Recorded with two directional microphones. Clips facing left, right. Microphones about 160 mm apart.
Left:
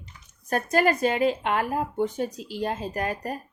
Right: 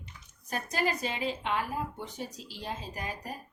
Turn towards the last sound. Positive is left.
turn(degrees=60)  # may be behind; listen again after turning